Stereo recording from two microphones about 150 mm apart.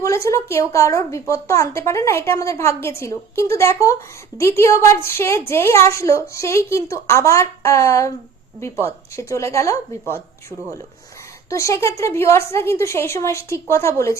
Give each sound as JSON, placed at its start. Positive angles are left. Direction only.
{"t": 0.0, "sound": "a woman's voice", "side_deg": 20}
{"t": 9.1, "sound": "a woman's voice", "side_deg": 20}
{"t": 11.4, "sound": "a woman's voice", "side_deg": 20}